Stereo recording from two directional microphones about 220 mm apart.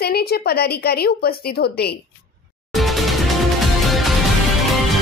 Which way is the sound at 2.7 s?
Centre (ahead or behind).